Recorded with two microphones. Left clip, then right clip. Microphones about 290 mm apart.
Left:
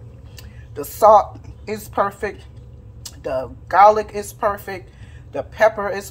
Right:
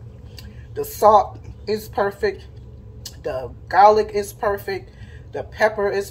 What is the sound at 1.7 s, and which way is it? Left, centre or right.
Speech, centre.